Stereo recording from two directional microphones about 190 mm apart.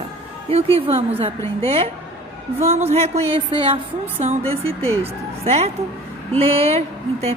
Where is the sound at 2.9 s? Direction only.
35° right (ahead or behind).